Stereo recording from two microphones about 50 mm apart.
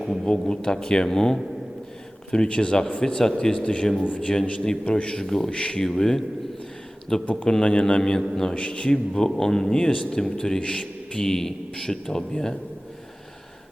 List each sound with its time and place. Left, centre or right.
0.3 s speech: centre
4.0 s speech: left
5.2 s speech: centre
5.5 s speech: centre
5.9 s speech: centre